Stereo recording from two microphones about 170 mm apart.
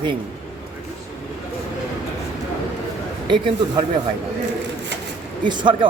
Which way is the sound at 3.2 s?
25° right (ahead or behind).